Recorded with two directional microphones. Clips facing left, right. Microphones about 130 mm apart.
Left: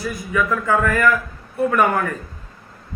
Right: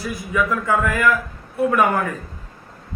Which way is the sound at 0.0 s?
5° right (ahead or behind).